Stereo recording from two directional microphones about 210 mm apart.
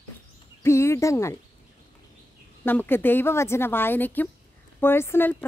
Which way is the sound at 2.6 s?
10° left (ahead or behind).